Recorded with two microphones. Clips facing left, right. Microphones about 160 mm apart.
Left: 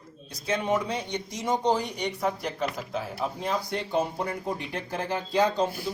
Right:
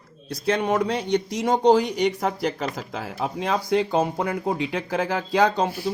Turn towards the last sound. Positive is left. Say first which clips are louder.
# right 4 dB
turn(degrees=-85)